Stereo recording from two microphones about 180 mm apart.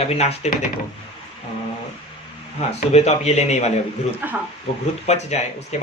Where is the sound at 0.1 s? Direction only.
35° left (ahead or behind).